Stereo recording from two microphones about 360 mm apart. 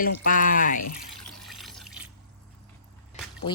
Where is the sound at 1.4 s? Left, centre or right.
Centre.